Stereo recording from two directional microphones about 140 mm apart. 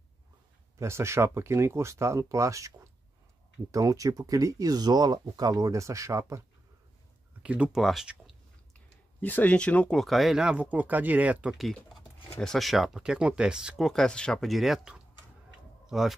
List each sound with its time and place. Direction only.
0.7 s speech: 20° right (ahead or behind)
7.4 s speech: 10° right (ahead or behind)
9.2 s speech: 10° left (ahead or behind)